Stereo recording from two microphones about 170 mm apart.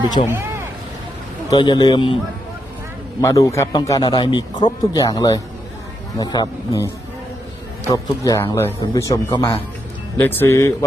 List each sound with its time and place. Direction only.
0.2 s speech: 40° left (ahead or behind)
1.5 s a man's voice: 25° left (ahead or behind)
3.2 s a man's voice: 20° left (ahead or behind)
7.9 s a man's voice: 20° left (ahead or behind)